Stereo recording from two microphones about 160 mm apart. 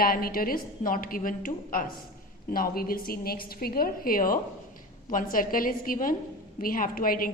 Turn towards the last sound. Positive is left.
turn(degrees=60)  # may be behind; listen again after turning